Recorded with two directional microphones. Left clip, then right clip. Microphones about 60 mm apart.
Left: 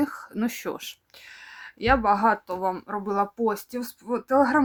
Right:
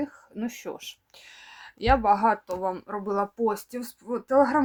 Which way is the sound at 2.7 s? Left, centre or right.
Left.